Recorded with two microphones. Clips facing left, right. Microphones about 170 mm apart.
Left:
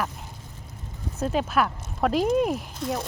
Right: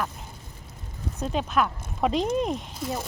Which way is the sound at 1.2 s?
5° left (ahead or behind).